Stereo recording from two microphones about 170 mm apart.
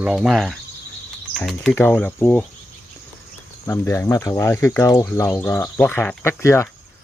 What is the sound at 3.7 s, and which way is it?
Speech, 15° left (ahead or behind).